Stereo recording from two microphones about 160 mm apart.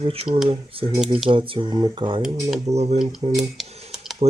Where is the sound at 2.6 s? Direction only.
40° right (ahead or behind).